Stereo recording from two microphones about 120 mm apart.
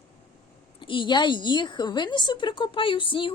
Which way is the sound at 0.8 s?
40° left (ahead or behind).